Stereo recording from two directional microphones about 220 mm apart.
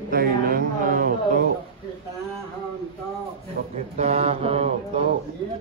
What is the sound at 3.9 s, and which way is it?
Mantra, 30° right (ahead or behind).